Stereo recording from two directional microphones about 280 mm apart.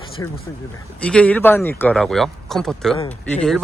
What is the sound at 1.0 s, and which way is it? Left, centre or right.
Speech, centre.